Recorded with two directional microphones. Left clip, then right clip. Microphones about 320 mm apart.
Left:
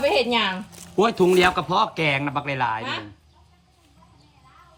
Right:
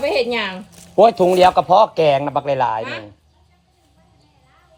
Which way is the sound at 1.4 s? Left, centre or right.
Left.